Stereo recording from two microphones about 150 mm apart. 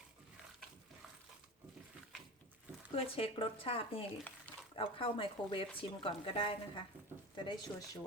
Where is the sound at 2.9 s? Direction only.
40° left (ahead or behind).